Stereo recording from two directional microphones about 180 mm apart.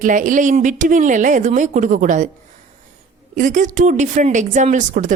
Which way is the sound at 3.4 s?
40° right (ahead or behind).